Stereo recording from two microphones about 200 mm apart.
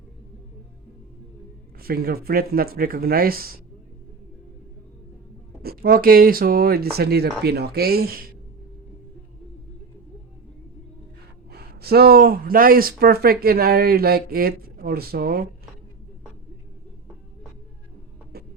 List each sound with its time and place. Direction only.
1.8 s speech: 50° right (ahead or behind)
5.6 s speech: 45° right (ahead or behind)
11.5 s speech: 50° right (ahead or behind)
18.3 s hum: 50° right (ahead or behind)